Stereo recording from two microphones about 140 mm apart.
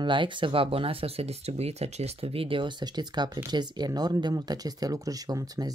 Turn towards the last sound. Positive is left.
turn(degrees=-25)  # may be behind; listen again after turning